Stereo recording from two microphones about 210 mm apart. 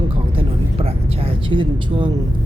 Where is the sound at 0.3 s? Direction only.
30° right (ahead or behind).